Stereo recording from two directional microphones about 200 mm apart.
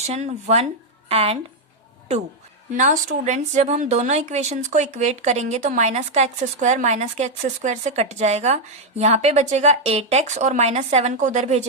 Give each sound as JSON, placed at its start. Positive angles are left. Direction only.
{"t": 0.0, "sound": "speech", "side_deg": -35}
{"t": 2.7, "sound": "speech", "side_deg": -40}